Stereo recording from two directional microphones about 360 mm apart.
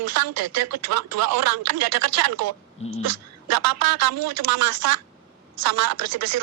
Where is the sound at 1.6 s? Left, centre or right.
Right.